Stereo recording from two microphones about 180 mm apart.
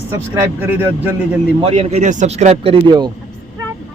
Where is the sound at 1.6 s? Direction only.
35° right (ahead or behind).